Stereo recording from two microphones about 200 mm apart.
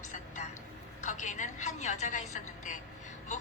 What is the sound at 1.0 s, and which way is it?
A woman's voice, 35° left (ahead or behind).